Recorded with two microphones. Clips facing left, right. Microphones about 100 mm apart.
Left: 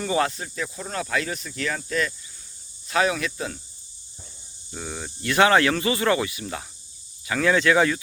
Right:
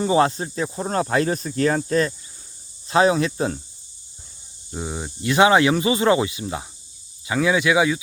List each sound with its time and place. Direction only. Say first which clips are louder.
0.0 s speech: right 6 dB; 25° right (ahead or behind)
4.7 s speech: right 5 dB; 20° right (ahead or behind)